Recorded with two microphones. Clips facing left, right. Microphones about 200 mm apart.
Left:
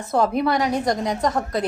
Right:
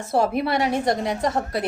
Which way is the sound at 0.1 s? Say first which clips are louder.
Left 1 dB; 25° right (ahead or behind).